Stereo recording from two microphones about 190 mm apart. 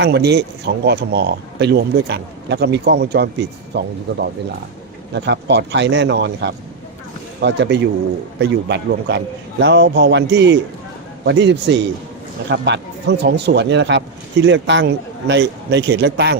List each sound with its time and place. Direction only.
0.0 s speech: 60° right (ahead or behind)
5.1 s a man's voice: 65° right (ahead or behind)